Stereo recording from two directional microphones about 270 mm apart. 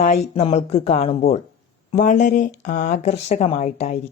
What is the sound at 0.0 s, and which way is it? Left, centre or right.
Speech, left.